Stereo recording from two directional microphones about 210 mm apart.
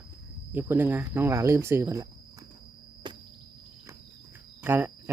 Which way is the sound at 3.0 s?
20° right (ahead or behind).